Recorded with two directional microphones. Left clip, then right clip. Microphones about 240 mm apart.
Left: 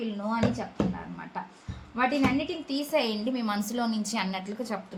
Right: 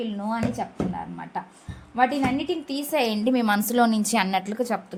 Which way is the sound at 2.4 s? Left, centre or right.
Right.